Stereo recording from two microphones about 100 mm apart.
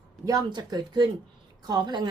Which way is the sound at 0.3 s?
40° right (ahead or behind).